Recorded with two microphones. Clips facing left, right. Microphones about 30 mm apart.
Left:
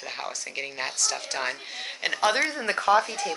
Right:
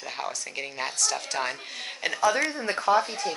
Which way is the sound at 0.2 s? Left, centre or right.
Centre.